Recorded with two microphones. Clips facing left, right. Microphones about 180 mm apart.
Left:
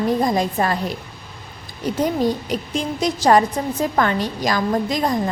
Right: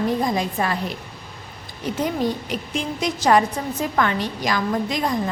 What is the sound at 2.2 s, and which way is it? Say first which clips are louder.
A woman's voice: left 3 dB; 40° left (ahead or behind).